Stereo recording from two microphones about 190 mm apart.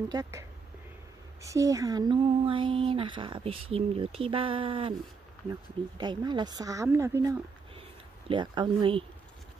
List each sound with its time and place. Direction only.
0.1 s speech: 15° right (ahead or behind)
5.9 s speech: 25° right (ahead or behind)
8.3 s speech: 25° right (ahead or behind)